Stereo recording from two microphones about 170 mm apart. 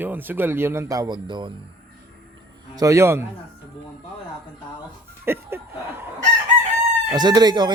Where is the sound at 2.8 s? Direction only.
20° right (ahead or behind).